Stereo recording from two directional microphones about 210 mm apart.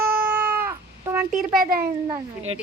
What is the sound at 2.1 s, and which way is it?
Speech, 25° right (ahead or behind).